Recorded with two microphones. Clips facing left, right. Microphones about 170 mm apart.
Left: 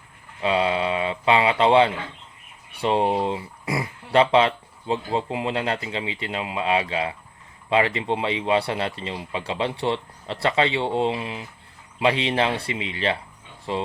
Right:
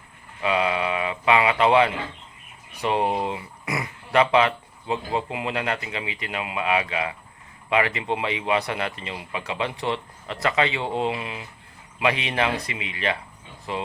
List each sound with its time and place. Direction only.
0.4 s speech: 30° left (ahead or behind)